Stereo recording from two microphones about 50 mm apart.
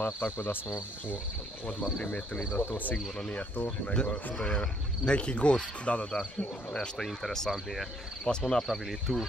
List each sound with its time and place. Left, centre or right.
0.0 s cricket: left
1.7 s cricket: left
3.6 s speech: left
7.0 s speech: centre
8.6 s speech: centre